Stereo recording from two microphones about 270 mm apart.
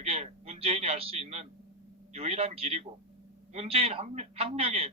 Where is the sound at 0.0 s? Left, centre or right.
Right.